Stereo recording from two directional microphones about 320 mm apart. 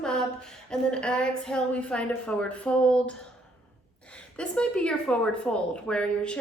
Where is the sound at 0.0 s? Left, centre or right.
Centre.